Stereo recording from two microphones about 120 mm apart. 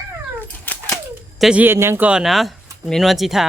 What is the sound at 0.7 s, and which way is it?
Typewriter, 15° left (ahead or behind).